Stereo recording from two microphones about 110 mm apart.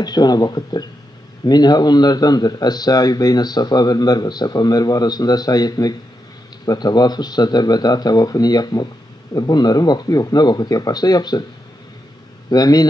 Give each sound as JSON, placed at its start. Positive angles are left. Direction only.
{"t": 0.0, "sound": "speech", "side_deg": 40}
{"t": 12.4, "sound": "speech", "side_deg": 35}